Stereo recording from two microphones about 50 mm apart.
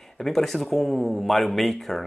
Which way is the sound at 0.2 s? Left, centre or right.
Centre.